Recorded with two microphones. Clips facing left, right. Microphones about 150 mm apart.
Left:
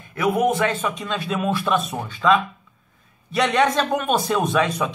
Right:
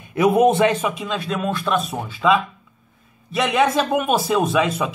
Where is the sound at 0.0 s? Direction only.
20° right (ahead or behind).